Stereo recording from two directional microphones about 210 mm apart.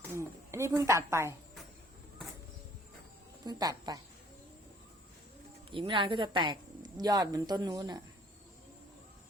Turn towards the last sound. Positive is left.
turn(degrees=-20)  # may be behind; listen again after turning